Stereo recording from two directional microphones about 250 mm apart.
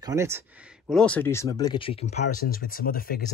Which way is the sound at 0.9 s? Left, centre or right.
Centre.